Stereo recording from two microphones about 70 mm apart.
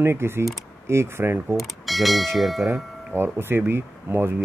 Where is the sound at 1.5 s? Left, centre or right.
Centre.